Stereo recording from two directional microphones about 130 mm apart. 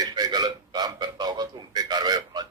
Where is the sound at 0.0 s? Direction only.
30° right (ahead or behind).